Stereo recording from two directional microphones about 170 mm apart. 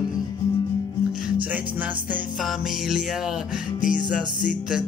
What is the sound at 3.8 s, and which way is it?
Music, 50° left (ahead or behind).